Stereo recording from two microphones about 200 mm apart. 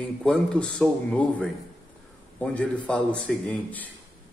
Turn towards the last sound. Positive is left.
turn(degrees=5)  # may be behind; listen again after turning